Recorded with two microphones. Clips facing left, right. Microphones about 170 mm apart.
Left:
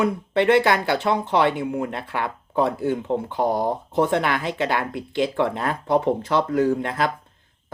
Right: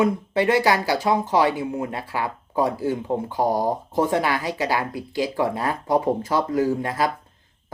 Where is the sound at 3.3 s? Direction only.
20° left (ahead or behind).